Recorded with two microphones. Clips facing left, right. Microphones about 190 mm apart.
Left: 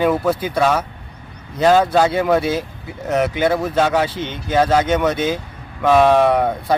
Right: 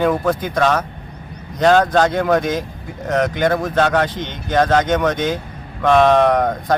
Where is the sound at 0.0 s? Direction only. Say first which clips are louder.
Even; 5° left (ahead or behind).